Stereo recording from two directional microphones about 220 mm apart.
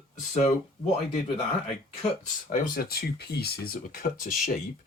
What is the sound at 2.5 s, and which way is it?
Speech, 45° left (ahead or behind).